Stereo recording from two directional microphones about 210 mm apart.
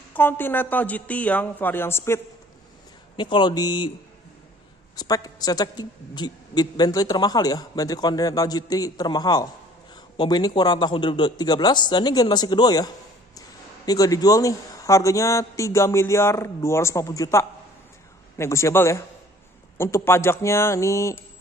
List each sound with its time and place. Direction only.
0.1 s a man's voice: 10° left (ahead or behind)
3.2 s a woman's voice: 20° left (ahead or behind)
4.9 s a woman's voice: 15° left (ahead or behind)